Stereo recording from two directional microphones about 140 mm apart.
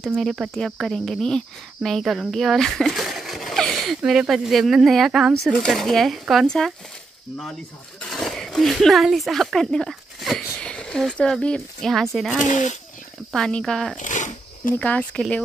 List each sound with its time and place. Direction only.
0.0 s speech: centre (ahead or behind)
8.1 s speech: 5° left (ahead or behind)
12.4 s speech: 60° left (ahead or behind)
13.3 s speech: 5° left (ahead or behind)
13.9 s zipper: 65° left (ahead or behind)
14.8 s speech: 10° left (ahead or behind)